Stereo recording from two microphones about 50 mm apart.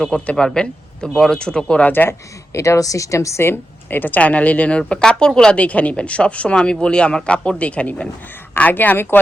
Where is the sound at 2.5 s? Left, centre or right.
Left.